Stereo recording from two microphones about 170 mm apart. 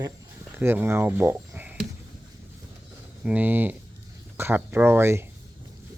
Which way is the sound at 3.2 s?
10° right (ahead or behind).